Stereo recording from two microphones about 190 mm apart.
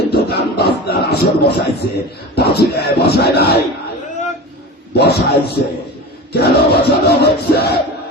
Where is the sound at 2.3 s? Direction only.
55° left (ahead or behind).